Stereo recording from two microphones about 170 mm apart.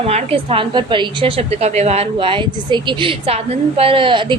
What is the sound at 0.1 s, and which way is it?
A woman's voice, 35° right (ahead or behind).